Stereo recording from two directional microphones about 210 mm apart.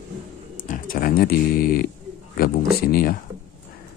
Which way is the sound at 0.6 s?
40° left (ahead or behind).